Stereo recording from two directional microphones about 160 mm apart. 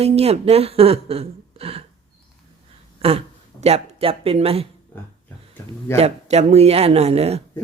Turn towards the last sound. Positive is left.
turn(degrees=-40)  # may be behind; listen again after turning